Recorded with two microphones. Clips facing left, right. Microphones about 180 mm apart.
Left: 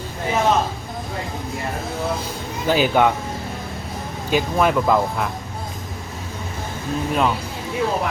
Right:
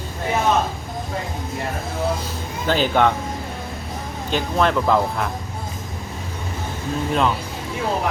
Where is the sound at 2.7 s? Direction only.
10° left (ahead or behind).